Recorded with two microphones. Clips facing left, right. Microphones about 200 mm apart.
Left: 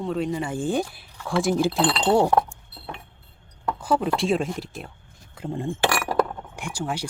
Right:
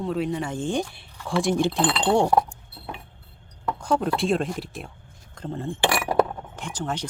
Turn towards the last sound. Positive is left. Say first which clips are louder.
# left 1 dB
turn(degrees=10)  # may be behind; listen again after turning